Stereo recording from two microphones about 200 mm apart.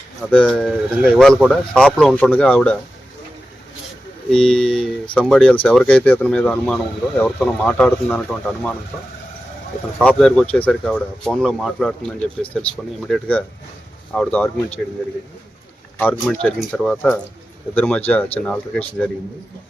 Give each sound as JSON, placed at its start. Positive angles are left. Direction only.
{"t": 0.2, "sound": "speech", "side_deg": 5}
{"t": 4.4, "sound": "speech", "side_deg": 5}
{"t": 10.0, "sound": "speech", "side_deg": 5}
{"t": 16.0, "sound": "speech", "side_deg": 5}